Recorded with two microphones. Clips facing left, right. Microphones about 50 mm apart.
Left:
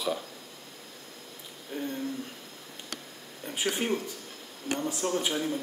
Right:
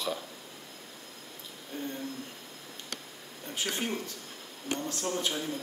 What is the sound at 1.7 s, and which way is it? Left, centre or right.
Speech, centre.